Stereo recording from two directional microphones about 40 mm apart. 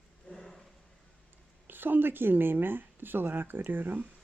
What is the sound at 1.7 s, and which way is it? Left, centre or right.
Speech, right.